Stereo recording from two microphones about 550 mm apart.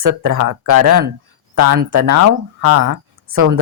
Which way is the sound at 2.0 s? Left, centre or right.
Right.